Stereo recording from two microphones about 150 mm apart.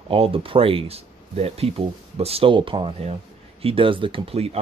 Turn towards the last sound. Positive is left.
turn(degrees=-40)  # may be behind; listen again after turning